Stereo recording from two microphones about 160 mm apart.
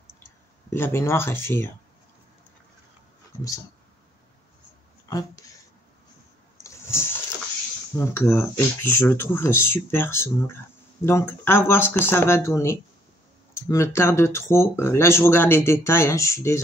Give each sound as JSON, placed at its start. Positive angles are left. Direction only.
{"t": 0.2, "sound": "speech", "side_deg": 15}
{"t": 5.0, "sound": "speech", "side_deg": 20}
{"t": 6.6, "sound": "vehicle", "side_deg": 20}
{"t": 8.0, "sound": "speech", "side_deg": 15}